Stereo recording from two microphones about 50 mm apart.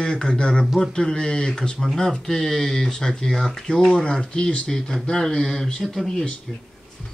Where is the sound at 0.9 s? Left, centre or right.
Centre.